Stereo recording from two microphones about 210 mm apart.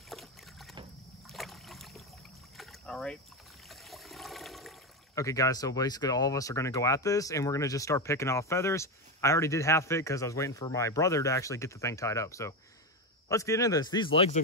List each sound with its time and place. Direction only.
0.1 s boat: centre (ahead or behind)
3.6 s water: centre (ahead or behind)
5.1 s a man's voice: 15° left (ahead or behind)